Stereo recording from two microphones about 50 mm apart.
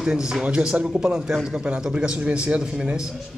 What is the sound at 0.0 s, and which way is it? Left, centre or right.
A man's voice, centre.